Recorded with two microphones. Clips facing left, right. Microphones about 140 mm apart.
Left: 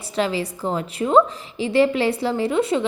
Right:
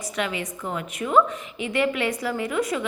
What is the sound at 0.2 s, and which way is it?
A woman's voice, 30° left (ahead or behind).